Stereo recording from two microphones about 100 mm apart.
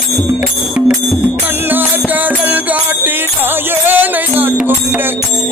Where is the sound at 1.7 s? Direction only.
20° right (ahead or behind).